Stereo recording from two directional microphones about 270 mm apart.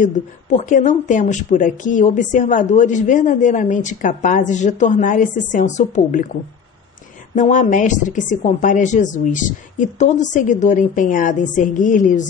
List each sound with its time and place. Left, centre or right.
0.0 s speech: left
7.3 s speech: left